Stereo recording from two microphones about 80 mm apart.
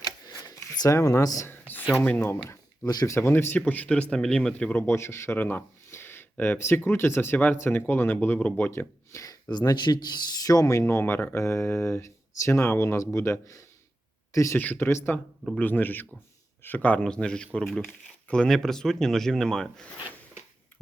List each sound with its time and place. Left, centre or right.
0.0 s a sound: left
0.9 s speech: left
1.5 s a sound: left
2.0 s speech: left
2.5 s a sound: left
3.1 s speech: left
3.7 s speech: centre
4.9 s speech: left
9.1 s a sound: left
9.5 s speech: left
10.8 s speech: left
14.6 s speech: left
14.8 s speech: left
15.5 s speech: left